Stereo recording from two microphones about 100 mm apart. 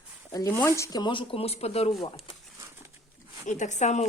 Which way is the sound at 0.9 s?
55° left (ahead or behind).